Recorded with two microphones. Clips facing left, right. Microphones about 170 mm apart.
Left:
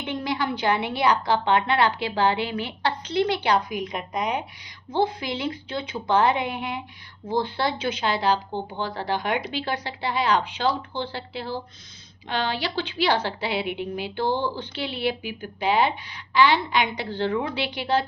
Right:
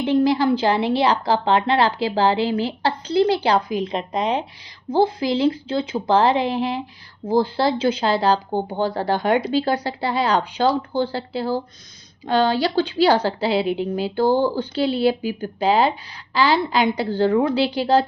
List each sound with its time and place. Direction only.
0.0 s speech: 30° right (ahead or behind)